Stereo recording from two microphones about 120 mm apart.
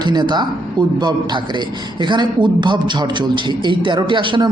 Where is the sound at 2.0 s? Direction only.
40° right (ahead or behind).